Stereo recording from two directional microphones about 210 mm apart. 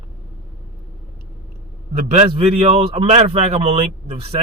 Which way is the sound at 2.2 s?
30° right (ahead or behind).